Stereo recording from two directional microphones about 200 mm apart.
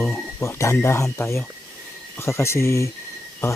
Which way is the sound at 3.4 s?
10° left (ahead or behind).